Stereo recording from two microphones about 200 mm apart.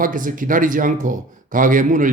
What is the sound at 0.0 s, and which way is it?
Speech, 40° right (ahead or behind).